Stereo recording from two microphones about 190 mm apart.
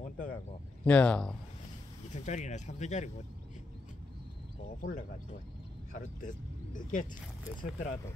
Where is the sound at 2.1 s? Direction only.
40° left (ahead or behind).